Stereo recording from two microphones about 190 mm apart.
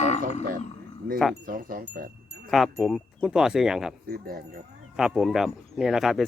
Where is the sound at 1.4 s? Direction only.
45° right (ahead or behind).